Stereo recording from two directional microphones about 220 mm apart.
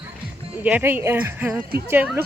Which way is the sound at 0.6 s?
10° right (ahead or behind).